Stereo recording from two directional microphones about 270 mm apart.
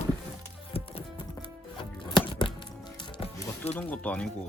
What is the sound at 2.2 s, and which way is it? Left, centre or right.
Music, centre.